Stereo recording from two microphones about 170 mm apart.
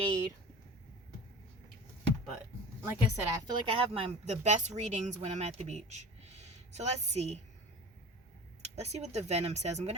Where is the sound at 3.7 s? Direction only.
35° right (ahead or behind).